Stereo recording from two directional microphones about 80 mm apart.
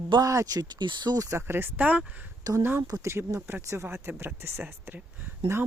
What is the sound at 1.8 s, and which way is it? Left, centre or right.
Speech, centre.